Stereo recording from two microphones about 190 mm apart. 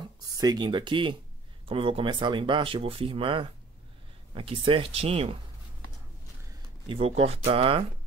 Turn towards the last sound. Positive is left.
turn(degrees=-30)  # may be behind; listen again after turning